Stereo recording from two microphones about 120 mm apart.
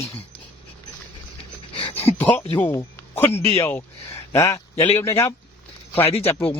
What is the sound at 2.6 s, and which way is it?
Speech, 20° left (ahead or behind).